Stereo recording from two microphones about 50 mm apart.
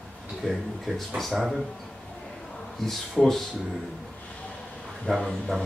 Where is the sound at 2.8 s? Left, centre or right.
Centre.